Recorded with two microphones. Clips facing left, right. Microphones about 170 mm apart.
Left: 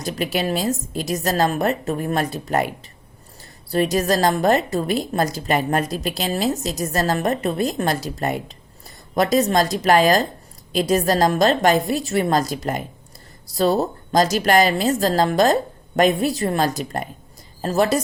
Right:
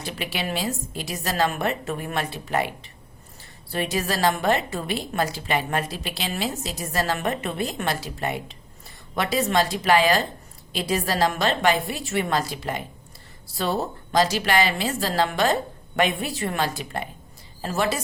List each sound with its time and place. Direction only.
0.0 s a woman's voice: 40° left (ahead or behind)
3.7 s a woman's voice: 40° left (ahead or behind)